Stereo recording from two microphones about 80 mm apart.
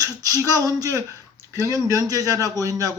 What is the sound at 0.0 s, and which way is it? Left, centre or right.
A man's voice, right.